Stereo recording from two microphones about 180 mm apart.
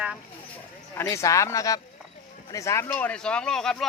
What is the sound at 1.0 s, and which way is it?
Speech, 15° left (ahead or behind).